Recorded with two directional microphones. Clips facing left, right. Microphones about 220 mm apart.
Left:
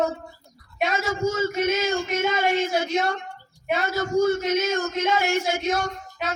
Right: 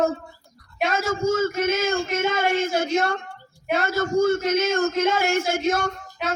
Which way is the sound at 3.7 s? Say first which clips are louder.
Right 1 dB; 50° right (ahead or behind).